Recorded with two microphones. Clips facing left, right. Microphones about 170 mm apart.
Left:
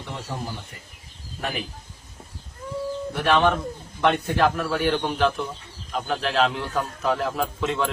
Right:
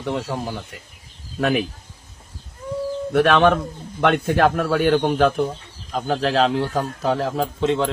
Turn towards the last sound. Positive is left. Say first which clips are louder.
# right 5 dB
turn(degrees=-30)  # may be behind; listen again after turning